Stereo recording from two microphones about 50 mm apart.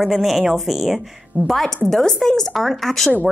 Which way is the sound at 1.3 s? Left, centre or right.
Right.